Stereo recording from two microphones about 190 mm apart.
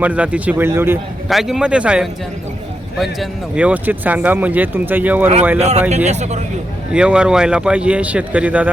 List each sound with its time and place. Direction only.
0.0 s a man's voice: 5° right (ahead or behind)
5.5 s speech: 35° right (ahead or behind)
6.9 s a man's voice: 5° right (ahead or behind)